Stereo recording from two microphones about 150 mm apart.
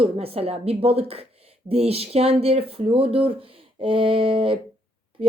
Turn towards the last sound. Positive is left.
turn(degrees=-35)  # may be behind; listen again after turning